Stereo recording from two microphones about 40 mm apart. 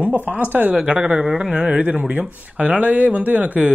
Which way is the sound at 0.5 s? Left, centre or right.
Right.